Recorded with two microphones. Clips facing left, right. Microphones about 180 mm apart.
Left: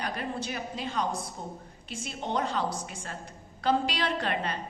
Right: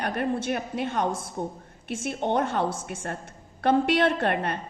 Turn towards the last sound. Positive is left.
turn(degrees=-60)  # may be behind; listen again after turning